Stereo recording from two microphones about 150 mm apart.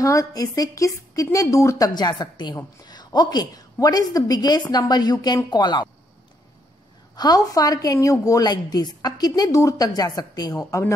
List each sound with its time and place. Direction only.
0.0 s a woman's voice: 20° left (ahead or behind)
7.2 s a woman's voice: 25° left (ahead or behind)